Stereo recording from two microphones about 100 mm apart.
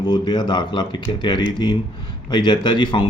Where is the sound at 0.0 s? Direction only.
45° left (ahead or behind).